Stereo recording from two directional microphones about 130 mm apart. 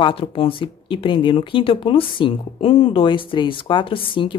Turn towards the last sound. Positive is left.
turn(degrees=40)  # may be behind; listen again after turning